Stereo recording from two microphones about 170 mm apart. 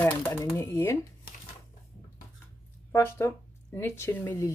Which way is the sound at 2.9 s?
15° left (ahead or behind).